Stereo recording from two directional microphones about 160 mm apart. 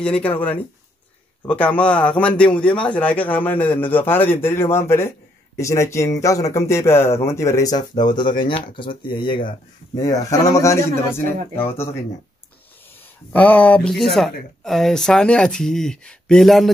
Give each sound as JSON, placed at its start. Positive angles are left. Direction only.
{"t": 0.0, "sound": "speech", "side_deg": 5}
{"t": 1.4, "sound": "a man's voice", "side_deg": 10}
{"t": 13.3, "sound": "a man's voice", "side_deg": 10}